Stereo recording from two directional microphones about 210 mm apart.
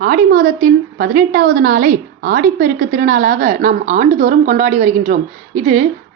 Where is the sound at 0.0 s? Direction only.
40° right (ahead or behind).